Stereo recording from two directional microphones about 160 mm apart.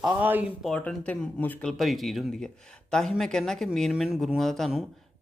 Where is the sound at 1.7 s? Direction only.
Centre (ahead or behind).